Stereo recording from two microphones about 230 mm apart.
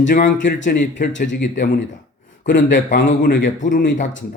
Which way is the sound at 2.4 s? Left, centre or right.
Left.